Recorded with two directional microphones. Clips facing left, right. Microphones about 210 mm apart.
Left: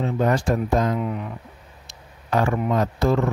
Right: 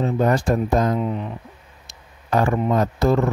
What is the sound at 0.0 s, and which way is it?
Speech, 40° right (ahead or behind).